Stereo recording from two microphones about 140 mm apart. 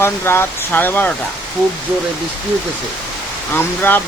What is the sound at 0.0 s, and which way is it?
Speech, 15° left (ahead or behind).